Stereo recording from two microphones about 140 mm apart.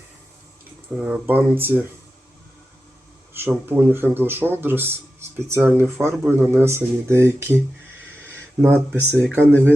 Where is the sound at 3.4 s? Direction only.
15° right (ahead or behind).